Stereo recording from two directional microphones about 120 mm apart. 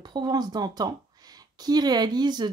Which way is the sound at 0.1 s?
35° right (ahead or behind).